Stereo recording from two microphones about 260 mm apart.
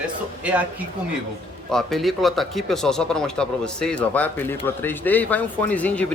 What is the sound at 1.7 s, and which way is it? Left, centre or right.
A man's voice, centre.